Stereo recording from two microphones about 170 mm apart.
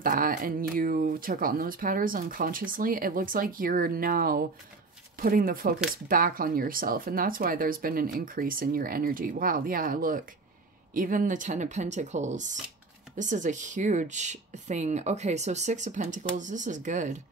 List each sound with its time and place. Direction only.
0.0 s speech: 55° right (ahead or behind)